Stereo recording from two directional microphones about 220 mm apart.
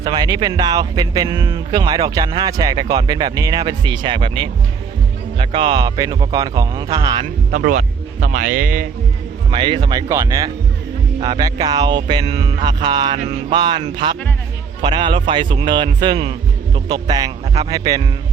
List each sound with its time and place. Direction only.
0.0 s speech: 20° right (ahead or behind)
7.5 s speech: 35° right (ahead or behind)
9.5 s speech: 20° right (ahead or behind)